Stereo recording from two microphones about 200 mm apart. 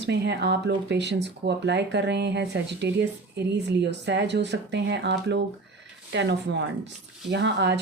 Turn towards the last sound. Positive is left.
turn(degrees=-60)  # may be behind; listen again after turning